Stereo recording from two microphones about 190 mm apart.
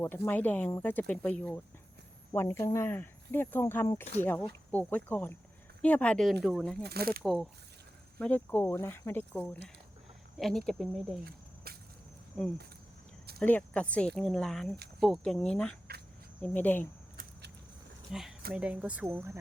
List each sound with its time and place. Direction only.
0.0 s speech: 10° left (ahead or behind)
6.8 s speech: 55° right (ahead or behind)
7.2 s speech: centre (ahead or behind)
11.3 s a sound: 55° right (ahead or behind)
12.4 s speech: centre (ahead or behind)
18.1 s speech: centre (ahead or behind)